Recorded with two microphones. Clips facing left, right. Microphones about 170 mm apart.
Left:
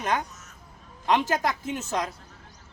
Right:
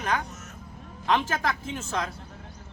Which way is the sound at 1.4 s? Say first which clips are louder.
Left 2 dB; 15° left (ahead or behind).